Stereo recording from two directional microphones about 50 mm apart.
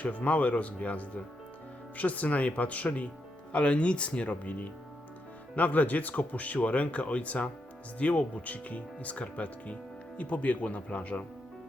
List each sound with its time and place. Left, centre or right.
0.0 s speech: left